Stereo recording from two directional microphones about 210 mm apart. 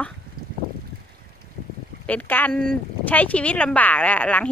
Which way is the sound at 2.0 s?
10° left (ahead or behind).